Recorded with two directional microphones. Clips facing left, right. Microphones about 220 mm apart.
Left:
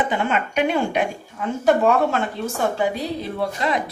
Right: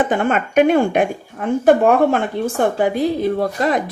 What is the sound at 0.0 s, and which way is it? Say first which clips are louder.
Speech: right 5 dB; 50° right (ahead or behind).